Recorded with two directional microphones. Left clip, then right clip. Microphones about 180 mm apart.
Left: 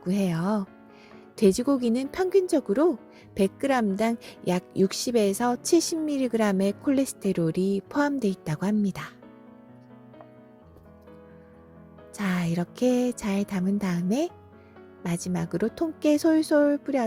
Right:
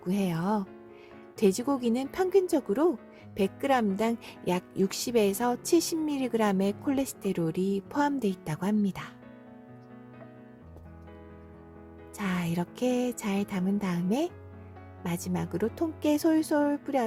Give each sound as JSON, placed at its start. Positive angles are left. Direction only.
{"t": 0.0, "sound": "music", "side_deg": 20}
{"t": 1.4, "sound": "speech", "side_deg": 20}
{"t": 12.1, "sound": "music", "side_deg": 20}
{"t": 15.0, "sound": "speech", "side_deg": 20}